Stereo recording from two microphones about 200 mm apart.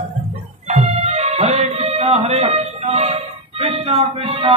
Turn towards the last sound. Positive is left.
turn(degrees=-25)  # may be behind; listen again after turning